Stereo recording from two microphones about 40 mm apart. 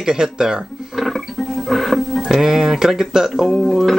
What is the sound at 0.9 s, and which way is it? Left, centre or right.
Music, centre.